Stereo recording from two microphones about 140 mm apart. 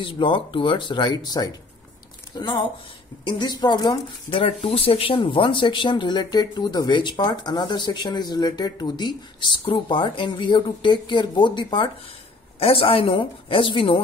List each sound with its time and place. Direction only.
0.0 s a woman's voice: 35° left (ahead or behind)
4.3 s speech: 45° left (ahead or behind)